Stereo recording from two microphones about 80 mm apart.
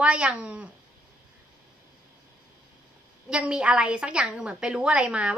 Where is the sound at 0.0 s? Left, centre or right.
Centre.